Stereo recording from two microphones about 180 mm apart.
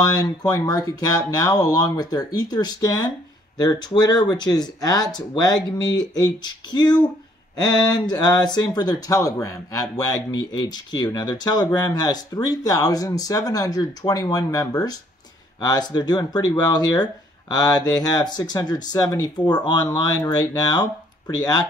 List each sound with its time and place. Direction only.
0.1 s speech: 20° left (ahead or behind)